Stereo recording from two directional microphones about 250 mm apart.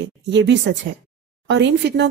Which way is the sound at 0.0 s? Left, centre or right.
Right.